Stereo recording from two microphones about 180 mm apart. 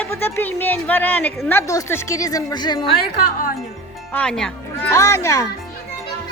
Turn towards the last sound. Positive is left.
turn(degrees=20)  # may be behind; listen again after turning